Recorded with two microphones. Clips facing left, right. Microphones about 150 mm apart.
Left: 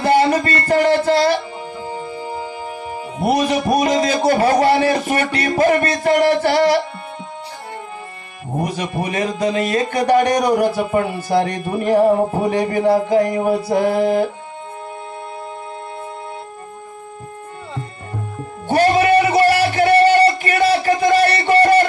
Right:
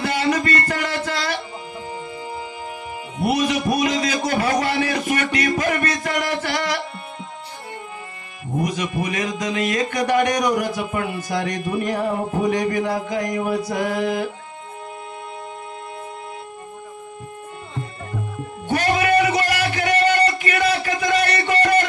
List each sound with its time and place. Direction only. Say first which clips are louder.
0.0 s music: left 6 dB; 35° left (ahead or behind)
3.2 s a man's voice: left 3 dB; 40° left (ahead or behind)
8.5 s a man's voice: left 1 dB; 35° left (ahead or behind)
18.7 s music: left 5 dB; 35° left (ahead or behind)